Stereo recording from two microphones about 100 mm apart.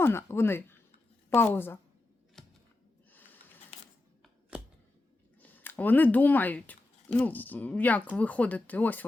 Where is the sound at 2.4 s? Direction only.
Centre (ahead or behind).